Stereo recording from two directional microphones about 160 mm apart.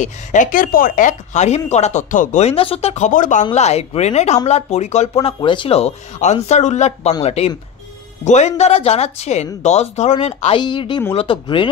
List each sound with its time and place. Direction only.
0.0 s speech: 50° left (ahead or behind)
10.6 s speech: 30° left (ahead or behind)